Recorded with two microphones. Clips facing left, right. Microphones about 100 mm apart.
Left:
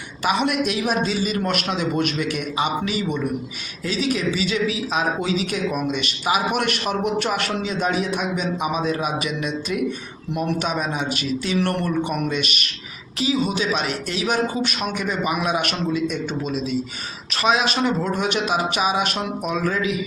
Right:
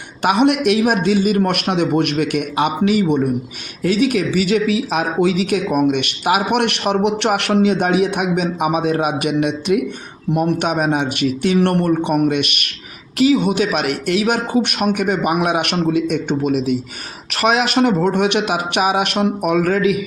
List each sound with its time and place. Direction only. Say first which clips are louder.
0.2 s a woman's voice: right 6 dB; 55° right (ahead or behind)